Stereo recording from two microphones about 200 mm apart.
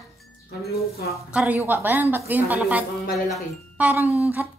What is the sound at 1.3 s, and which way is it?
A woman's voice, 5° right (ahead or behind).